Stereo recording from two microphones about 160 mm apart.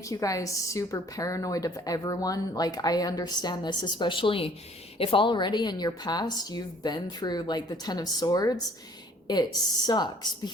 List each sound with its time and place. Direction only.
0.0 s a woman's voice: 20° left (ahead or behind)